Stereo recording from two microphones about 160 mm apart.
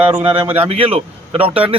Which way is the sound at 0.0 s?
35° right (ahead or behind).